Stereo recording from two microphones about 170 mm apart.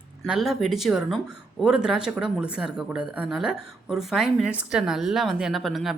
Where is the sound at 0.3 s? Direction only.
Centre (ahead or behind).